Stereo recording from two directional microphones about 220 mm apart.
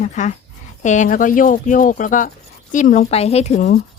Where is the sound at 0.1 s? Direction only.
35° left (ahead or behind).